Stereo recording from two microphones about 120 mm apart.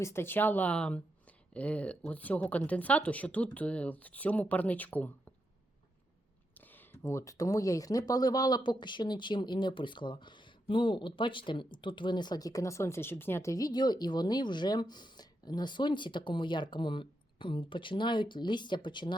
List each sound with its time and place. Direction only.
0.0 s speech: 20° left (ahead or behind)
7.0 s speech: 25° left (ahead or behind); by 19.1 s 40° left (ahead or behind)